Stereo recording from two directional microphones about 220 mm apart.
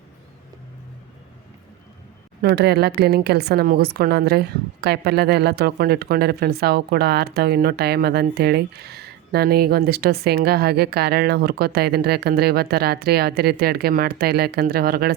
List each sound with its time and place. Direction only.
2.4 s a woman's voice: 45° right (ahead or behind)